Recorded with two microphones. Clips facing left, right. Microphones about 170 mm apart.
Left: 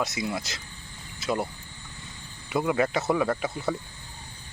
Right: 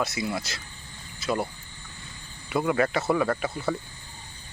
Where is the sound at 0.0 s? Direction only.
20° left (ahead or behind).